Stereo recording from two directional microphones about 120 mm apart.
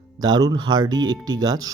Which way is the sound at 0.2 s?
35° right (ahead or behind).